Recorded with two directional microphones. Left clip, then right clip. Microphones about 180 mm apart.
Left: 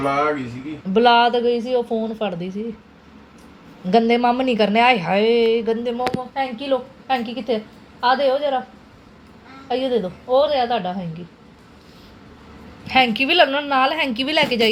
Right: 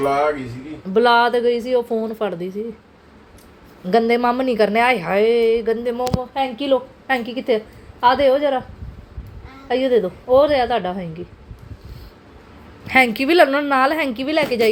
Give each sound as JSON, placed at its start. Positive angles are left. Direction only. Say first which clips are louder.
{"t": 0.9, "sound": "a woman's voice", "louder": "even", "side_deg": -15}
{"t": 3.8, "sound": "a woman's voice", "louder": "even", "side_deg": -15}
{"t": 6.3, "sound": "a woman's voice", "louder": "right 6 dB", "side_deg": -35}
{"t": 9.6, "sound": "a woman's voice", "louder": "right 4 dB", "side_deg": -30}
{"t": 12.8, "sound": "a woman's voice", "louder": "right 1 dB", "side_deg": -25}